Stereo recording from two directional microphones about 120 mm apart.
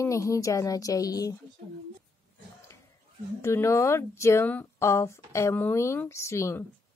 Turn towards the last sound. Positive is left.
turn(degrees=25)  # may be behind; listen again after turning